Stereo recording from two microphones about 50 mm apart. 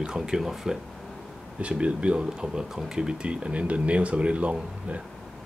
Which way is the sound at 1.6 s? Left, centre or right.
Right.